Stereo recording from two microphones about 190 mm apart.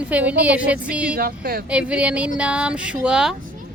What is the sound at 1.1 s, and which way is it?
Speech, 50° right (ahead or behind).